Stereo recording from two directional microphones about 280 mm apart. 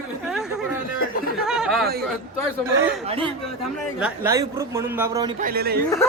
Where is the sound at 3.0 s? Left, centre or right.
Centre.